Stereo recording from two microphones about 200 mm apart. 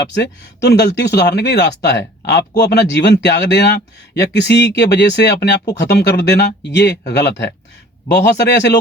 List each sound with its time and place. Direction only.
0.1 s speech: 55° left (ahead or behind)